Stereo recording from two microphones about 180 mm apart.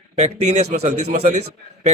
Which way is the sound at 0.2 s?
40° right (ahead or behind).